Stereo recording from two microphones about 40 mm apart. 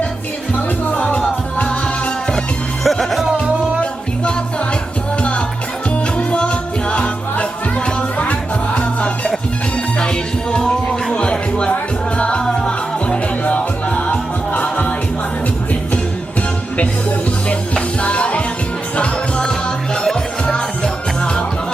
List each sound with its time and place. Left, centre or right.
0.5 s music: left
2.8 s music: centre
6.1 s music: left
11.1 s music: left
13.4 s music: left
18.0 s music: left